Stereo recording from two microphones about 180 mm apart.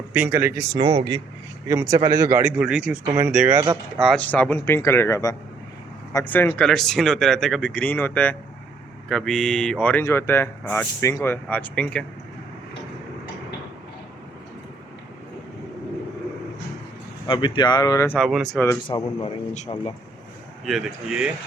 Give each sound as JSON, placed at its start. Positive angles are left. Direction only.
{"t": 0.1, "sound": "speech", "side_deg": -10}
{"t": 0.9, "sound": "speech", "side_deg": -30}
{"t": 1.6, "sound": "speech", "side_deg": -15}
{"t": 2.4, "sound": "speech", "side_deg": -5}
{"t": 3.6, "sound": "speech", "side_deg": -25}
{"t": 4.0, "sound": "speech", "side_deg": 5}
{"t": 17.2, "sound": "speech", "side_deg": 25}
{"t": 18.2, "sound": "speech", "side_deg": 0}
{"t": 18.9, "sound": "speech", "side_deg": 30}
{"t": 20.7, "sound": "speech", "side_deg": 0}